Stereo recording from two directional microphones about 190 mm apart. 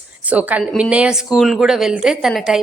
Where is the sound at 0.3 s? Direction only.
10° right (ahead or behind).